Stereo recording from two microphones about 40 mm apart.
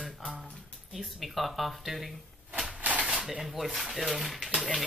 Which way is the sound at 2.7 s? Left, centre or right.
Right.